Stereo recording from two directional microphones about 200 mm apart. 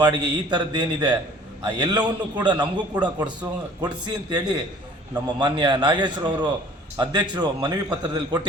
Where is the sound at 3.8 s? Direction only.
20° right (ahead or behind).